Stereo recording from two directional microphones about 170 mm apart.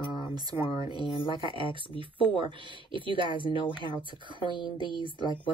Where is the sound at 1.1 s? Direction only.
30° left (ahead or behind).